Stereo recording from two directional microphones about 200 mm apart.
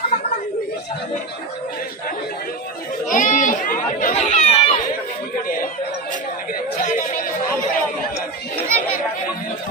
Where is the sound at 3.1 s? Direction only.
40° left (ahead or behind).